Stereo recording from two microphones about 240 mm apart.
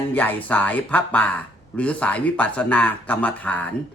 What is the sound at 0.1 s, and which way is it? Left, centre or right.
A man's voice, centre.